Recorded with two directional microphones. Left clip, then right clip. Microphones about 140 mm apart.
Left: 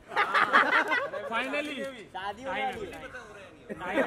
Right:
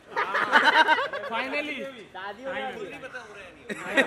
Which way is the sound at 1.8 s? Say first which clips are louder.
Even; 45° left (ahead or behind).